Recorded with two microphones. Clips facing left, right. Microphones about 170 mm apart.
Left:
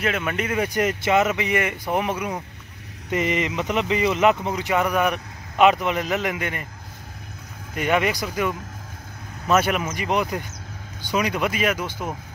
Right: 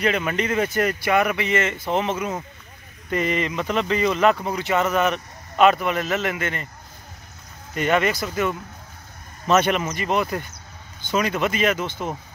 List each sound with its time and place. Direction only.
0.0 s speech: centre (ahead or behind)
0.5 s speech: 15° left (ahead or behind)
7.7 s speech: 10° left (ahead or behind)